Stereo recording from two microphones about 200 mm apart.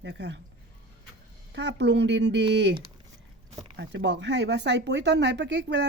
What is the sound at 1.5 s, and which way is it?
Speech, 60° right (ahead or behind).